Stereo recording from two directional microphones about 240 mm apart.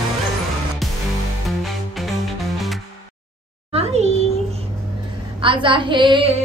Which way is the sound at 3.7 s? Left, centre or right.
Right.